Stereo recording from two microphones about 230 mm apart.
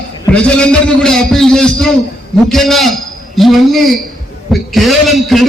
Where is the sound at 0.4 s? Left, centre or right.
Centre.